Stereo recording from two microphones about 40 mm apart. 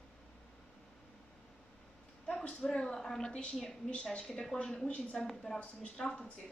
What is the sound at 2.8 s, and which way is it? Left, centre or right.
Speech, centre.